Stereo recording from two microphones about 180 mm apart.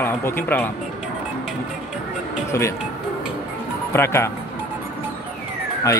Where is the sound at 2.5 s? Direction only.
15° left (ahead or behind).